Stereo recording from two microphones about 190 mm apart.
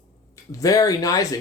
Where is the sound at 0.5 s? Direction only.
20° left (ahead or behind).